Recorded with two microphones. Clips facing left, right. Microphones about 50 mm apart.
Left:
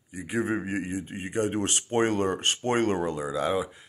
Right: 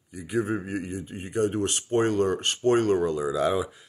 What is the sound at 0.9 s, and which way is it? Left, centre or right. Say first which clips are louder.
Speech: left 2 dB; left.